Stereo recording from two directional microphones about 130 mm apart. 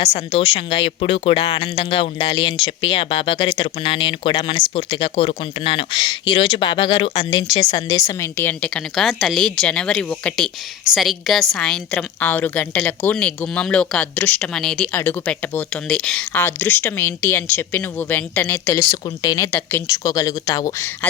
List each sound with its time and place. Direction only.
0.3 s a woman's voice: 45° left (ahead or behind); by 14.8 s 5° left (ahead or behind)
14.9 s a woman's voice: 15° left (ahead or behind); by 19.5 s 30° left (ahead or behind)
19.5 s a woman's voice: 15° left (ahead or behind)
20.1 s speech: 25° left (ahead or behind)